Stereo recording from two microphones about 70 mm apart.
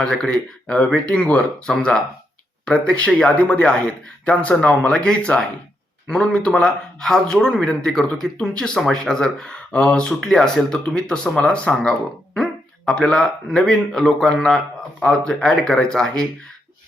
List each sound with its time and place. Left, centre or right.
0.0 s a man's voice: centre